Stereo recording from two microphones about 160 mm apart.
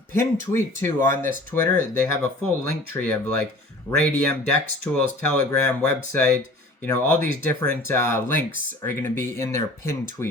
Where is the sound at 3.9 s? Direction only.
10° left (ahead or behind).